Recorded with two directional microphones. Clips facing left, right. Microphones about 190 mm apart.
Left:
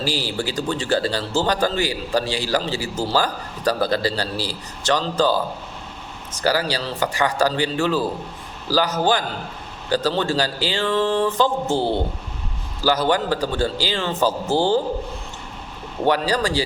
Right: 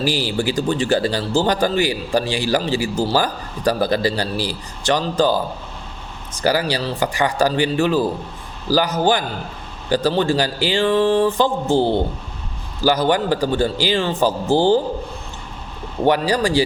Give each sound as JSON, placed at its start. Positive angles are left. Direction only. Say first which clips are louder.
{"t": 0.0, "sound": "speech", "louder": "right 4 dB", "side_deg": -15}
{"t": 6.4, "sound": "speech", "louder": "right 2 dB", "side_deg": -15}
{"t": 9.9, "sound": "speech", "louder": "right 3 dB", "side_deg": -15}
{"t": 16.0, "sound": "speech", "louder": "right 3 dB", "side_deg": -15}